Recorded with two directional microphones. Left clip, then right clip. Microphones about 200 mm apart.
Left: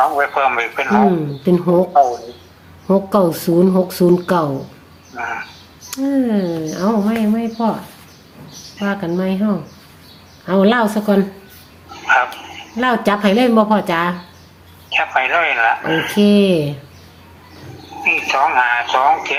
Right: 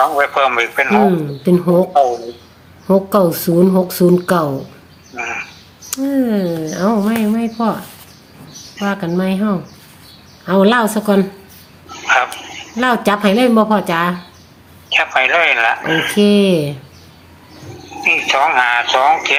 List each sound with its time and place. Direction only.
0.0 s speech: 40° right (ahead or behind)
1.0 s speech: 10° right (ahead or behind)
5.1 s speech: 55° right (ahead or behind)
5.9 s speech: 10° right (ahead or behind)
8.8 s speech: 15° right (ahead or behind)
11.9 s a sound: 35° right (ahead or behind)
12.7 s speech: 15° right (ahead or behind)
14.8 s speech: 35° right (ahead or behind)
16.1 s speech: 15° right (ahead or behind)
18.0 s speech: 35° right (ahead or behind)